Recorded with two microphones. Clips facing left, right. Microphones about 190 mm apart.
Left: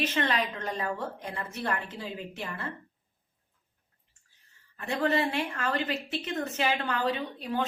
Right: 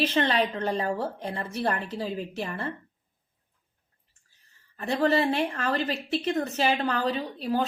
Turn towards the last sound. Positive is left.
turn(degrees=-35)  # may be behind; listen again after turning